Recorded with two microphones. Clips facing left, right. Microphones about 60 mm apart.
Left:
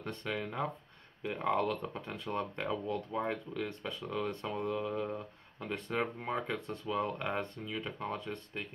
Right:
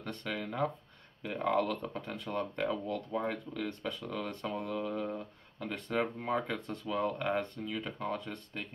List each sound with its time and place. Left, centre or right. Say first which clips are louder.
0.0 s speech: even; centre